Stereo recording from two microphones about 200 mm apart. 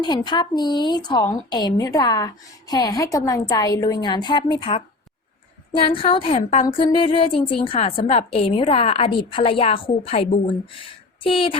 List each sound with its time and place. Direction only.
0.0 s a woman's voice: 20° left (ahead or behind)
5.8 s a woman's voice: 25° left (ahead or behind)